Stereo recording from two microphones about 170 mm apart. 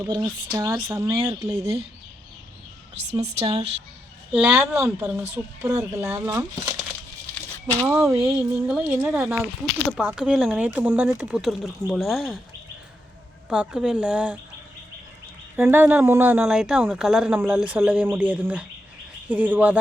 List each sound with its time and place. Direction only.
0.0 s speech: 25° right (ahead or behind)
3.1 s speech: 40° right (ahead or behind)
4.3 s a woman's voice: 5° right (ahead or behind)
7.3 s a sound: 10° left (ahead or behind)
7.9 s a woman's voice: 15° right (ahead or behind)
13.5 s speech: 5° right (ahead or behind)
15.5 s a woman's voice: 10° right (ahead or behind)